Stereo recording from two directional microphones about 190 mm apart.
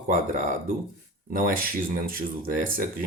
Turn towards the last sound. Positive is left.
turn(degrees=-45)  # may be behind; listen again after turning